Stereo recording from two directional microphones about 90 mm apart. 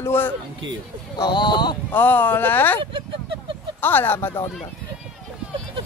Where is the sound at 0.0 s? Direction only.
25° left (ahead or behind).